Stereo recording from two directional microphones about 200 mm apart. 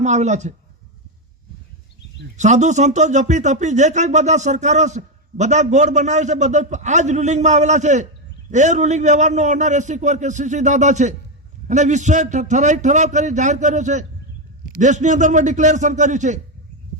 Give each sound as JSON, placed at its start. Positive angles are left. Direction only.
{"t": 0.0, "sound": "speech", "side_deg": -35}
{"t": 2.4, "sound": "speech", "side_deg": -35}